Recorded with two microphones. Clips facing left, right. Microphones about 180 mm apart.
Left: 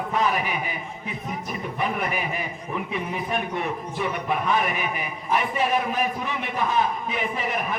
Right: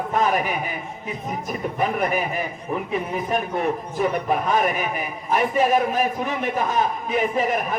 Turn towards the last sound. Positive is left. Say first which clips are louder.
# right 5 dB
turn(degrees=-45)  # may be behind; listen again after turning